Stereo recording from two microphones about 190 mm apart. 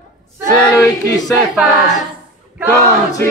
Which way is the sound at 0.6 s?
20° left (ahead or behind).